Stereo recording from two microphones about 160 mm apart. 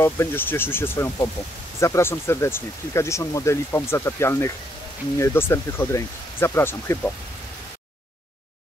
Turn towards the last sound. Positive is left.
turn(degrees=15)  # may be behind; listen again after turning